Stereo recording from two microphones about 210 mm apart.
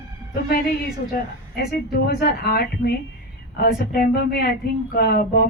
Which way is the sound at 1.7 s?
45° left (ahead or behind).